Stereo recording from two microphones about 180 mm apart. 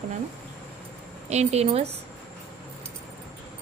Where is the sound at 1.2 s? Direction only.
40° right (ahead or behind).